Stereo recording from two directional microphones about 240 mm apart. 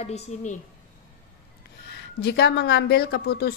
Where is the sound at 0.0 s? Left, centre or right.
Left.